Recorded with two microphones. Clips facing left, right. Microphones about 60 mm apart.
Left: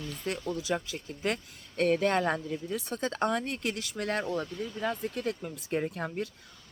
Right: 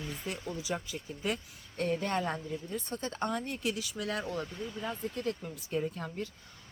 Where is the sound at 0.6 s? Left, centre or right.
Left.